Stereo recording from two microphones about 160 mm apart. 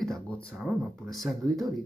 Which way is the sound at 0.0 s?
5° left (ahead or behind).